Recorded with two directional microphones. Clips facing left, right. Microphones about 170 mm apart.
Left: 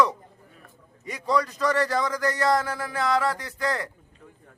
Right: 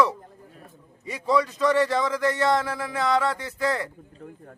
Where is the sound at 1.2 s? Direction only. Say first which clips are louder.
Right 2 dB; centre (ahead or behind).